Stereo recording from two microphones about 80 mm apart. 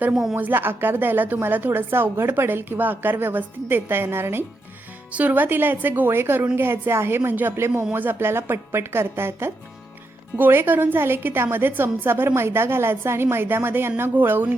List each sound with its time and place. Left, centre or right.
0.1 s a woman's voice: centre
0.3 s a woman's voice: right